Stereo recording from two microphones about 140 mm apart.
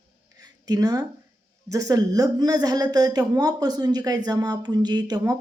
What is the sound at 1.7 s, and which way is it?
A woman's voice, 25° right (ahead or behind).